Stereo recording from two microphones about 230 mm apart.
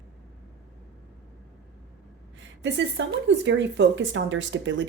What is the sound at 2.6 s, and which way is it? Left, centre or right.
A woman's voice, right.